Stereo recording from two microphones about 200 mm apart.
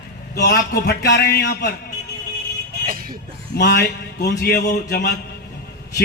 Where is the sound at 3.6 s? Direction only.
55° left (ahead or behind).